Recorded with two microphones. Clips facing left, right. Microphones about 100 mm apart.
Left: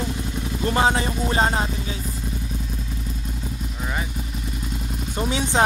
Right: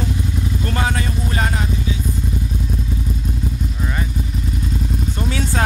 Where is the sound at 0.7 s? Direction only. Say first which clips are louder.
Left 5 dB; 25° left (ahead or behind).